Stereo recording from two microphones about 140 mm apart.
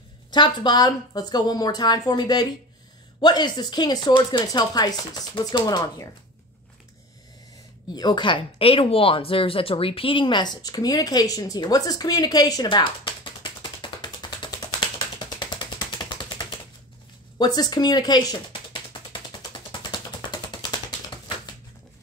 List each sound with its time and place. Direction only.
0.3 s speech: 35° left (ahead or behind)
7.9 s speech: 30° left (ahead or behind)
19.5 s a sound: 35° left (ahead or behind)